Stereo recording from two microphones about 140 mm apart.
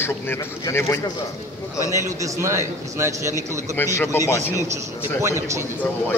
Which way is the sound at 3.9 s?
20° left (ahead or behind).